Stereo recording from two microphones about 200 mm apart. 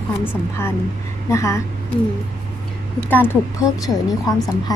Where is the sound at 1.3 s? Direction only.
15° left (ahead or behind).